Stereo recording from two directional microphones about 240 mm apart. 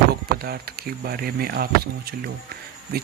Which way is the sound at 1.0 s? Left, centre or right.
Right.